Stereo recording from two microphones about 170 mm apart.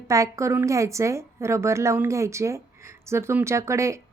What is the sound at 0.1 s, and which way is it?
A woman's voice, 20° right (ahead or behind).